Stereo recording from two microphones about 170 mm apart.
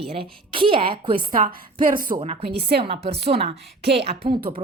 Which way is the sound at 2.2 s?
35° right (ahead or behind).